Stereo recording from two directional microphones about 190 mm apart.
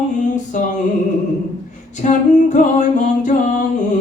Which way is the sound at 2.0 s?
40° left (ahead or behind).